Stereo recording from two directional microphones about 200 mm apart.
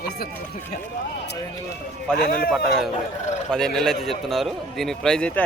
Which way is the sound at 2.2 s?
50° left (ahead or behind).